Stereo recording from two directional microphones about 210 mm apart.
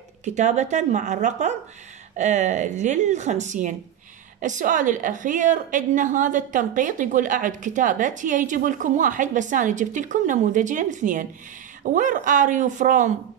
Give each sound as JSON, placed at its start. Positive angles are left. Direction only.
{"t": 0.2, "sound": "a woman's voice", "side_deg": -35}